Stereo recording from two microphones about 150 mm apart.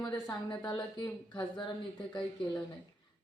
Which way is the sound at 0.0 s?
25° left (ahead or behind).